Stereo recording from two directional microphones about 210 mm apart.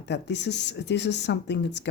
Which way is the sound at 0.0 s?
55° left (ahead or behind).